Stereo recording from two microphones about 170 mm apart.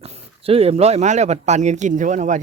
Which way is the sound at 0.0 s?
35° right (ahead or behind).